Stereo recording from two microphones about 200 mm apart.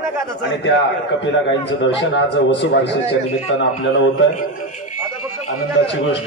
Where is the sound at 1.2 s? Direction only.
65° left (ahead or behind).